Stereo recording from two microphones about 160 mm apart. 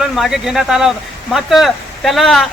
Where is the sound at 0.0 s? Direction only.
Centre (ahead or behind).